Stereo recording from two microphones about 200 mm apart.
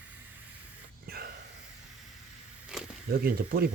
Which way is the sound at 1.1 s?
50° right (ahead or behind).